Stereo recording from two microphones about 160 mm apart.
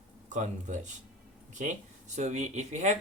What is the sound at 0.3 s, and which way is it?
Speech, 50° right (ahead or behind).